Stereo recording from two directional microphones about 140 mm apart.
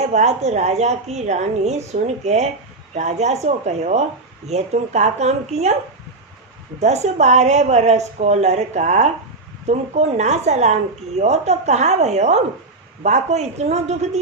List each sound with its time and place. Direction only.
0.1 s a woman's voice: 55° right (ahead or behind)
6.7 s a woman's voice: 50° right (ahead or behind)